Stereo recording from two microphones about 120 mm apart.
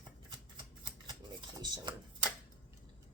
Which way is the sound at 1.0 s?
35° right (ahead or behind).